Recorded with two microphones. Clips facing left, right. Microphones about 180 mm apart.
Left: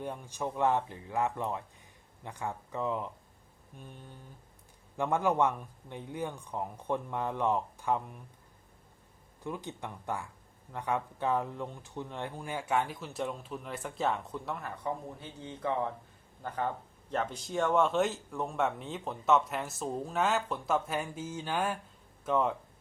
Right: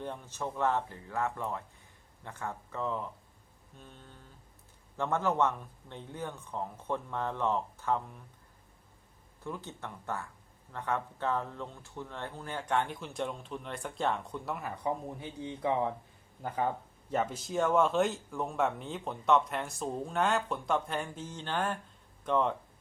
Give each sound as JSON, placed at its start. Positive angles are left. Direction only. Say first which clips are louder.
{"t": 0.0, "sound": "speech", "louder": "left 1 dB", "side_deg": 10}
{"t": 9.4, "sound": "speech", "louder": "left 2 dB", "side_deg": 15}
{"t": 15.2, "sound": "a man's voice", "louder": "right 3 dB", "side_deg": -15}